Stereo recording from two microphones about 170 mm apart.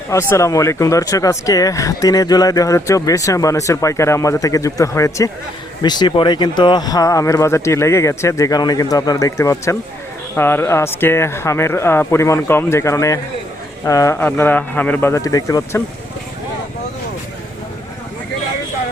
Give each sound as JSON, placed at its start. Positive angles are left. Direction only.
{"t": 0.1, "sound": "speech", "side_deg": 15}